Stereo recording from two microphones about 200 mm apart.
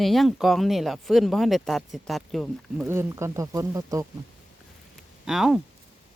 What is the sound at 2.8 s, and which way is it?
Speech, 15° right (ahead or behind).